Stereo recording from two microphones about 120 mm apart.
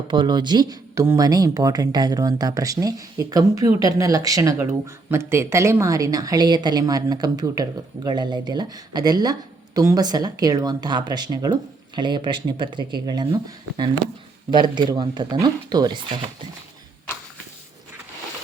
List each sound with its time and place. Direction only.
0.1 s speech: 40° right (ahead or behind)